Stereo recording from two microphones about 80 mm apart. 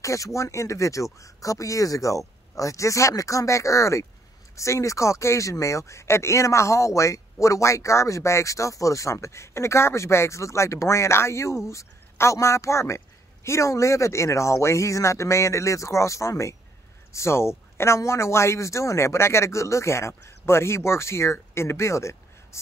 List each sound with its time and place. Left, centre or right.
0.0 s speech: left